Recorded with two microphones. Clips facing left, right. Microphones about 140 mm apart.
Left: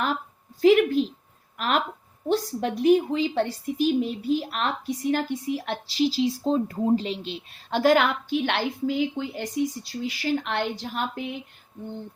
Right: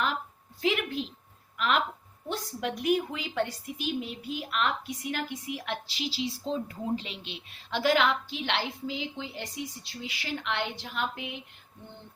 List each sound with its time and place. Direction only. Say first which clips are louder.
0.6 s a woman's voice: left 11 dB; 40° left (ahead or behind)